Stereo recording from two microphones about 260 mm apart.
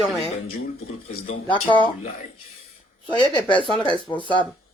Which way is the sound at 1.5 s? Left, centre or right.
Centre.